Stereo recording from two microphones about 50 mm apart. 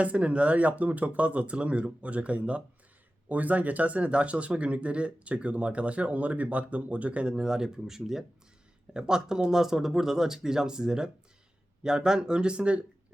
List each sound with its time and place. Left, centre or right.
0.0 s speech: right